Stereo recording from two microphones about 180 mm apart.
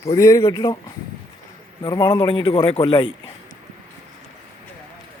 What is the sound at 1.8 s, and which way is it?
Speech, 20° left (ahead or behind).